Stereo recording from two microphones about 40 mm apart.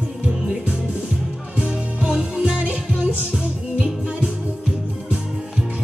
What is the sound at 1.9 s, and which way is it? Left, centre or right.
Music, right.